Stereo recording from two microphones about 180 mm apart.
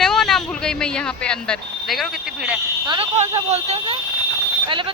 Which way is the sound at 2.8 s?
30° right (ahead or behind).